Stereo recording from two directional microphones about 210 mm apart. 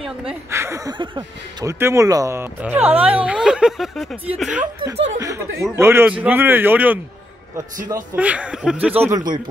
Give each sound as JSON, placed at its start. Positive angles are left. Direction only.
{"t": 0.0, "sound": "speech", "side_deg": -5}
{"t": 0.5, "sound": "speech", "side_deg": -15}
{"t": 4.7, "sound": "speech", "side_deg": -25}
{"t": 5.2, "sound": "speech", "side_deg": -15}
{"t": 9.0, "sound": "speech", "side_deg": -15}